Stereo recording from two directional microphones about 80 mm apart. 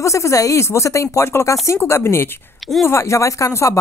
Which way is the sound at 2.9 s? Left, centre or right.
Left.